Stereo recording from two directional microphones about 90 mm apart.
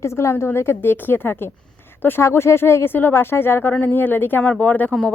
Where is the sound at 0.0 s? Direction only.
30° left (ahead or behind).